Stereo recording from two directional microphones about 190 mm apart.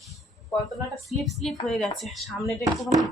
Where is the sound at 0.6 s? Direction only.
Centre (ahead or behind).